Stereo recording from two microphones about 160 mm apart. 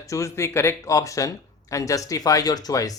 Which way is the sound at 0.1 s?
15° left (ahead or behind).